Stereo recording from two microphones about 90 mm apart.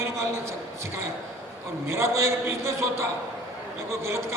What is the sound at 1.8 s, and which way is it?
A man's voice, 30° right (ahead or behind).